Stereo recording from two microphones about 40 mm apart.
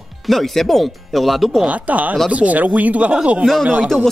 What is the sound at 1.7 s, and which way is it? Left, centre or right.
Speech, right.